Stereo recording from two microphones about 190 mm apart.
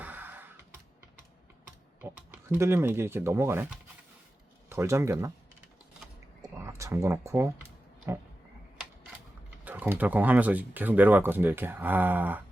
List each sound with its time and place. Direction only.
0.0 s a sound: 10° right (ahead or behind)
2.0 s speech: 10° right (ahead or behind)
4.7 s speech: 15° right (ahead or behind)
6.4 s a sound: 15° right (ahead or behind)
8.1 s speech: 15° right (ahead or behind)
9.6 s speech: 10° right (ahead or behind)